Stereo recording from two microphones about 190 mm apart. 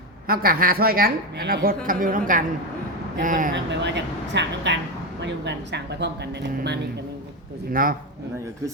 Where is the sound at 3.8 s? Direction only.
70° right (ahead or behind).